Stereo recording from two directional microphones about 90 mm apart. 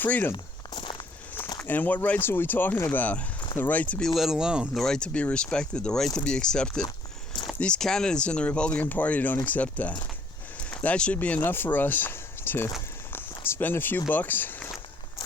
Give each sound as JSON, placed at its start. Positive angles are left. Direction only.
{"t": 0.0, "sound": "speech", "side_deg": 20}
{"t": 0.7, "sound": "walk", "side_deg": 65}
{"t": 1.6, "sound": "speech", "side_deg": 20}
{"t": 4.0, "sound": "speech", "side_deg": 0}
{"t": 4.8, "sound": "speech", "side_deg": 10}
{"t": 13.1, "sound": "a sound", "side_deg": 25}
{"t": 14.1, "sound": "speech", "side_deg": 20}